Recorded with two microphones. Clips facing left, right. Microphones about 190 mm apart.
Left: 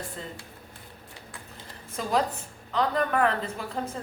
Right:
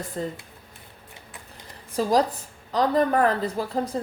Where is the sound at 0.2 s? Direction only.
40° right (ahead or behind).